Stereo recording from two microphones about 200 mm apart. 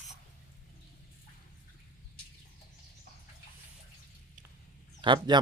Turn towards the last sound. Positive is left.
turn(degrees=-20)  # may be behind; listen again after turning